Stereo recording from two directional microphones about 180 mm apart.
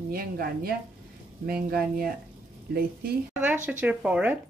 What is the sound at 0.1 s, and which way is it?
Speech, 55° right (ahead or behind).